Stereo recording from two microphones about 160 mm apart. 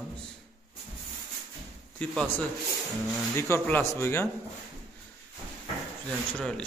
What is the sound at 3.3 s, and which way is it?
Speech, 15° left (ahead or behind).